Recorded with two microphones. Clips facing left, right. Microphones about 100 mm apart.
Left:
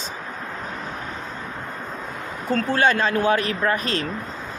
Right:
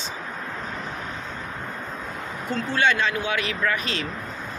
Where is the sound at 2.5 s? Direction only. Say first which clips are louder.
Left 3 dB; 40° left (ahead or behind).